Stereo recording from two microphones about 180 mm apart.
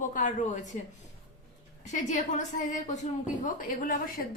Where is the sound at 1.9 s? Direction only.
40° left (ahead or behind).